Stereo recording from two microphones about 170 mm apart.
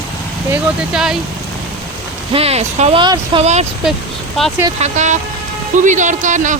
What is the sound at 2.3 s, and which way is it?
Speech, 40° right (ahead or behind).